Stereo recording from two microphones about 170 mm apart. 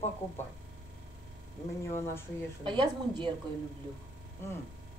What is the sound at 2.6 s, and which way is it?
Speech, 30° right (ahead or behind).